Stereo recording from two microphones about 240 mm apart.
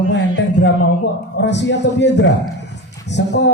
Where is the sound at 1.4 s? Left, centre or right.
Left.